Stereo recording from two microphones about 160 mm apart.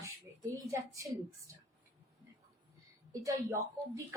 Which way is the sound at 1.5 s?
20° right (ahead or behind).